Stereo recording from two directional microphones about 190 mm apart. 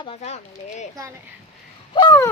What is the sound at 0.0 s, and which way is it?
Speech, 35° left (ahead or behind).